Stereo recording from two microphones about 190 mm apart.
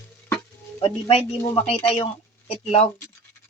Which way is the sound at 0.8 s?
30° left (ahead or behind).